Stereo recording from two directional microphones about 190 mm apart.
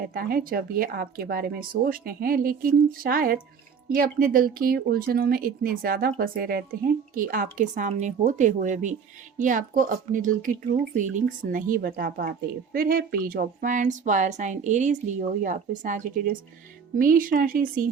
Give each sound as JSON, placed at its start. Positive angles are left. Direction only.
{"t": 0.0, "sound": "speech", "side_deg": -50}